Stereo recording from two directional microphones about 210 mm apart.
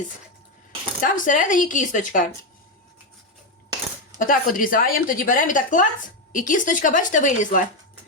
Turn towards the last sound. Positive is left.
turn(degrees=35)  # may be behind; listen again after turning